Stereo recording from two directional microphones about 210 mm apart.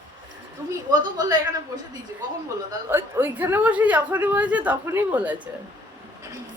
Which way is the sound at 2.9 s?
10° right (ahead or behind).